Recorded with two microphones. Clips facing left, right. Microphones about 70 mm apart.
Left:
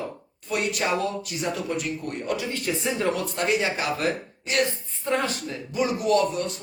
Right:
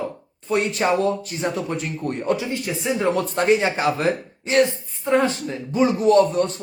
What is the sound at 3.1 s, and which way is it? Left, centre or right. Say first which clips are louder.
Speech: right 6 dB; right.